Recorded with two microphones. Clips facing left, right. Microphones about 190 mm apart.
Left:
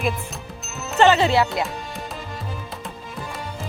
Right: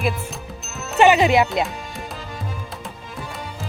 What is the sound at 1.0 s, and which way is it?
Speech, 15° right (ahead or behind).